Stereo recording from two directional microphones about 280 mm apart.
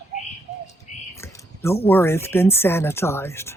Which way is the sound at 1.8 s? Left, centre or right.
Centre.